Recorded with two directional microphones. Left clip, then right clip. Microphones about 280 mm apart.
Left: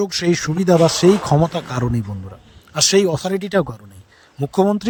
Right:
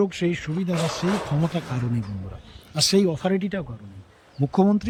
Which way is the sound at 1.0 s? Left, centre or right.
Left.